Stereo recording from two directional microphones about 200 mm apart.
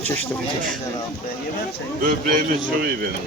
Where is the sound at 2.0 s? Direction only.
40° right (ahead or behind).